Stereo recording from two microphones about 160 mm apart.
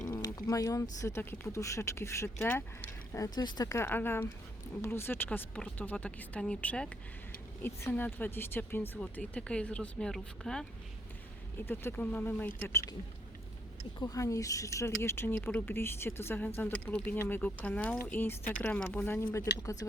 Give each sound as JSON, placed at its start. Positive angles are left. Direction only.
{"t": 0.3, "sound": "speech", "side_deg": 20}
{"t": 14.0, "sound": "speech", "side_deg": 20}